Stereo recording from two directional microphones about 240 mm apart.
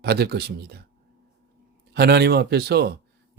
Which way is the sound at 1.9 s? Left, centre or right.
Right.